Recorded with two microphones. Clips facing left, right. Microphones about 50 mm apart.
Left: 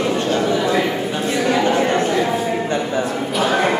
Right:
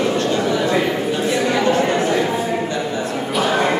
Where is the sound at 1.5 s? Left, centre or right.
Centre.